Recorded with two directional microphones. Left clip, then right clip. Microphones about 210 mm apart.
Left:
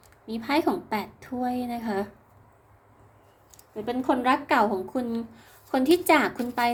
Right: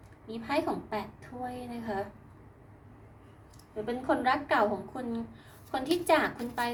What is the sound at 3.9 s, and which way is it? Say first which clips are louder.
Speech: left 4 dB; 50° left (ahead or behind).